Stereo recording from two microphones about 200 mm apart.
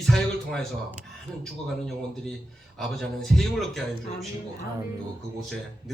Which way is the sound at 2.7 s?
Centre (ahead or behind).